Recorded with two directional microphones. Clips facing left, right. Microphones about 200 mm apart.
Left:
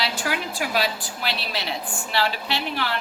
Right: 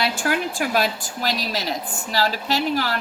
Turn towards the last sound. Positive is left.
turn(degrees=-40)  # may be behind; listen again after turning